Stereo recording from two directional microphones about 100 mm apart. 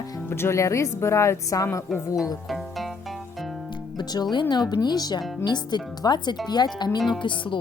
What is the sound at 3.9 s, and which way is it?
Speech, 45° left (ahead or behind).